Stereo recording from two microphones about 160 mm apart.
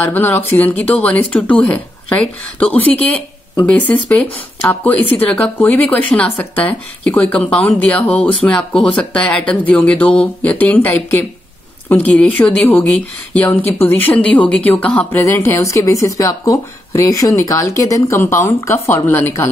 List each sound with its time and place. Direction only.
0.0 s a woman's voice: 10° left (ahead or behind)